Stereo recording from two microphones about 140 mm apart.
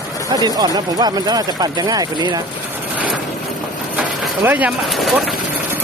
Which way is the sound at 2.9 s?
5° right (ahead or behind).